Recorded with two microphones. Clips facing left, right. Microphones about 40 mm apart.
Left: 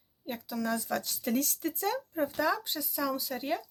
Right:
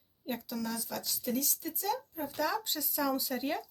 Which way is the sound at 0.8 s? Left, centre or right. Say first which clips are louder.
Left 5 dB; left.